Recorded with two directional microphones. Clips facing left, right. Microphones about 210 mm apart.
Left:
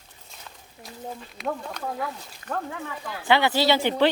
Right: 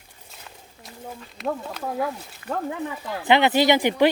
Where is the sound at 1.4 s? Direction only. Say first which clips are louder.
Right 3 dB; 5° right (ahead or behind).